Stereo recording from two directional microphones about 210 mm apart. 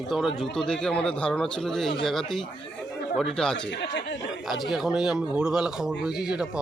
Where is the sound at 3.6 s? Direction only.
55° left (ahead or behind).